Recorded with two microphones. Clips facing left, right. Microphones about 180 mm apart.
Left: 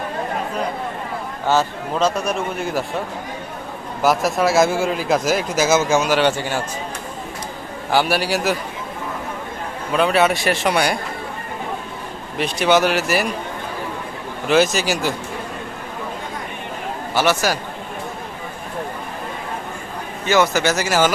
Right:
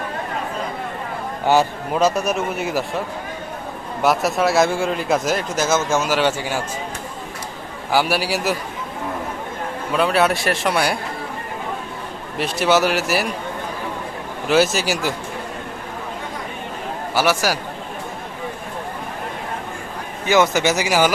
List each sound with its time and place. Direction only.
1.5 s a man's voice: 10° right (ahead or behind)
4.0 s speech: centre (ahead or behind)
7.9 s speech: 5° right (ahead or behind)
9.9 s speech: centre (ahead or behind)
12.4 s speech: 5° right (ahead or behind)
14.4 s a man's voice: 5° right (ahead or behind)
17.2 s a man's voice: 10° right (ahead or behind)
20.2 s a man's voice: 15° right (ahead or behind)